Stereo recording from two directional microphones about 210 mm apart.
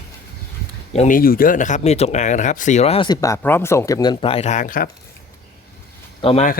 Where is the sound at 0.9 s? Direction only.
40° left (ahead or behind).